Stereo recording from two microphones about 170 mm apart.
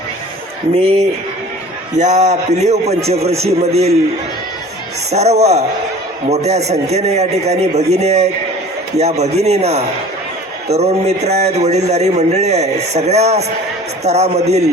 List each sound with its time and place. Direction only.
2.0 s speech: 40° right (ahead or behind)
5.1 s speech: 40° right (ahead or behind)